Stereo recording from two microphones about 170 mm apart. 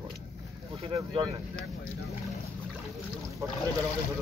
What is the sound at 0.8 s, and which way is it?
Speech, 30° right (ahead or behind).